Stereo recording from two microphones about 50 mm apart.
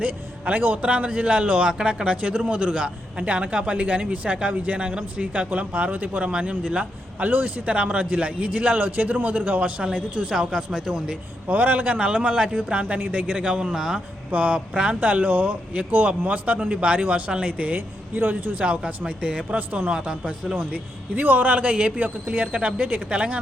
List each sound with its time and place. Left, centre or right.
0.0 s a man's voice: right
7.3 s a man's voice: right; by 11.2 s centre
11.4 s a man's voice: right; by 14.0 s centre
14.3 s a man's voice: right
14.7 s speech: centre
15.0 s a man's voice: right
17.7 s a man's voice: right
18.9 s a man's voice: right
20.7 s a man's voice: right